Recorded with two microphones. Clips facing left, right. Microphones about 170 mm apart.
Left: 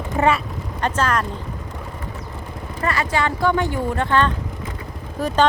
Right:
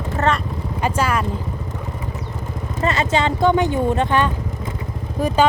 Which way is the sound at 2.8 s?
20° right (ahead or behind).